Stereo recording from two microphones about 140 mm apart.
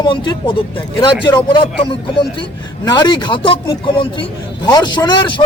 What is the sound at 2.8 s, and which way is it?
Speech, 30° left (ahead or behind).